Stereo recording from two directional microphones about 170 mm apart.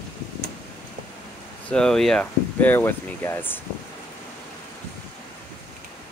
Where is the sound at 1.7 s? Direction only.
5° left (ahead or behind).